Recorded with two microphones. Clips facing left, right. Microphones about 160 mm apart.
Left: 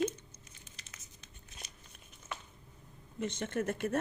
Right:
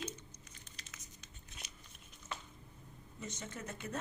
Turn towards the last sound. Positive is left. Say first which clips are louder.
# left 11 dB
turn(degrees=60)  # may be behind; listen again after turning